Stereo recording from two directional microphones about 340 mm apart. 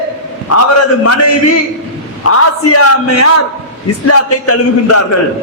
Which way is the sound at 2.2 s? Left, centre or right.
Left.